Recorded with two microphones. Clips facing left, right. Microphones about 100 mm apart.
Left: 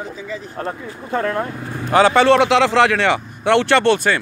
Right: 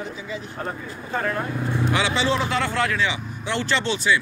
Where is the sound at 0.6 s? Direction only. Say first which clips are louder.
Left 4 dB; 65° left (ahead or behind).